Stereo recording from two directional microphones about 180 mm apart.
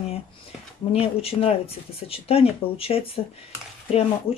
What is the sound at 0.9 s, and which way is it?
Speech, 30° left (ahead or behind).